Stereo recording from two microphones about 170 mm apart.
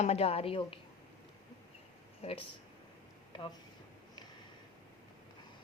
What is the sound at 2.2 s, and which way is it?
Speech, 40° left (ahead or behind).